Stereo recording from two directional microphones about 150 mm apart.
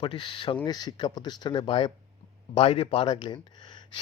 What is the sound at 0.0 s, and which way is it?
Speech, 35° left (ahead or behind).